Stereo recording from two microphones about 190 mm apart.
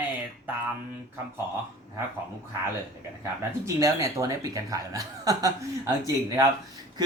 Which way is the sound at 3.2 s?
15° right (ahead or behind).